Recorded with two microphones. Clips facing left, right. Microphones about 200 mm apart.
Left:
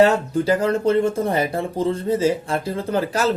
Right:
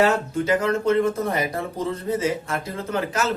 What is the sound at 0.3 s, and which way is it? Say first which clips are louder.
Speech: left 3 dB; 35° left (ahead or behind).